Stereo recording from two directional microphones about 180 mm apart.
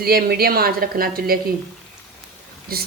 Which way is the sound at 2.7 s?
55° right (ahead or behind).